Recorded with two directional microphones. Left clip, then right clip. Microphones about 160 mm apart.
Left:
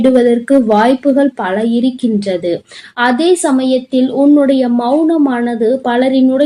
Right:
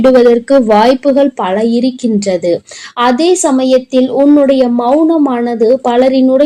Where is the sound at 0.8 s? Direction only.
30° right (ahead or behind).